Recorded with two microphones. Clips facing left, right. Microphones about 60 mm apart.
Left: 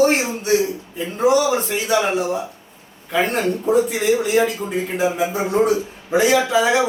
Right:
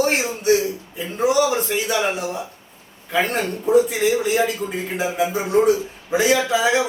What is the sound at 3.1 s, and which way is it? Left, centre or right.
Speech, centre.